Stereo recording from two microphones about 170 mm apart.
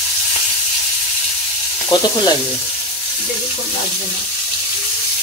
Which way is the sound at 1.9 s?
25° left (ahead or behind).